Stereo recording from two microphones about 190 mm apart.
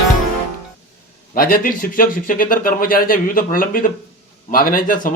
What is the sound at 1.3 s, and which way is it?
A man's voice, 50° left (ahead or behind).